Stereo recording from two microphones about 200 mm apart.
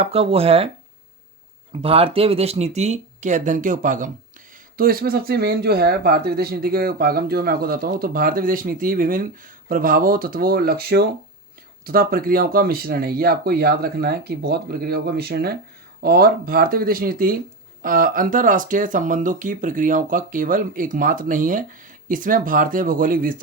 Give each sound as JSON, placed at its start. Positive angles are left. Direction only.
{"t": 0.0, "sound": "speech", "side_deg": -30}
{"t": 1.7, "sound": "speech", "side_deg": -30}